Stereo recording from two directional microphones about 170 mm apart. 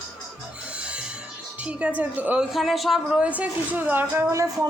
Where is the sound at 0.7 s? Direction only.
5° right (ahead or behind).